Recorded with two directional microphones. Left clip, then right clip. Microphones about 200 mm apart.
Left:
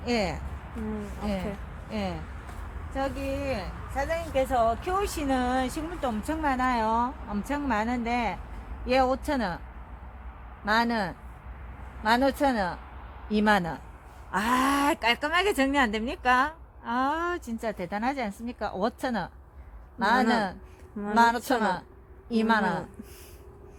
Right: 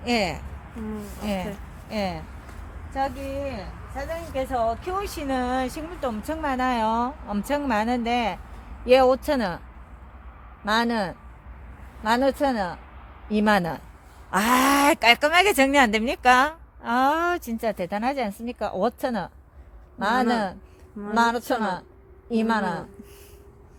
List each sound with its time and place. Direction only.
0.0 s speech: 50° right (ahead or behind)
3.9 s speech: 20° right (ahead or behind); by 9.6 s 45° right (ahead or behind)
10.7 s speech: 35° right (ahead or behind)